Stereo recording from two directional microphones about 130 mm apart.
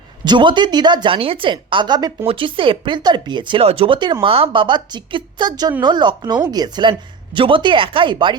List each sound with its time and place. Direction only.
0.3 s speech: 35° right (ahead or behind)